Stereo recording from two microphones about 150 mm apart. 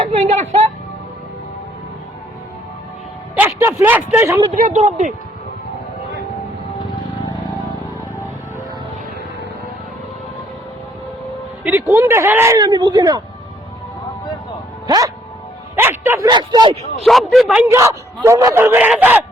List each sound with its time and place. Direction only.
0.0 s a sound: 40° right (ahead or behind)
3.3 s speech: 15° right (ahead or behind)
4.5 s speech: 55° right (ahead or behind)
11.6 s speech: 15° right (ahead or behind)
14.8 s music: 25° right (ahead or behind)
15.7 s music: 15° right (ahead or behind)
16.3 s speech: 30° right (ahead or behind)
17.1 s speech: centre (ahead or behind)
17.7 s a man's voice: 20° right (ahead or behind)